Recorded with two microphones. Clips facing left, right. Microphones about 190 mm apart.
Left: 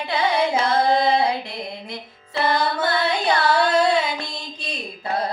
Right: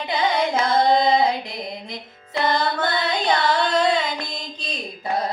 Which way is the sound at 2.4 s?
10° left (ahead or behind).